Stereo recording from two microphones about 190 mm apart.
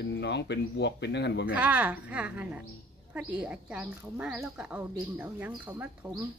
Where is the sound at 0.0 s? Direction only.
65° left (ahead or behind).